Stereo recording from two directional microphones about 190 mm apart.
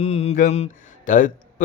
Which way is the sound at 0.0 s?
35° left (ahead or behind).